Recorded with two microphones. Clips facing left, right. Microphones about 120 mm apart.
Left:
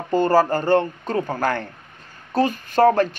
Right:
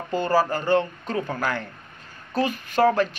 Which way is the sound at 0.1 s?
45° left (ahead or behind).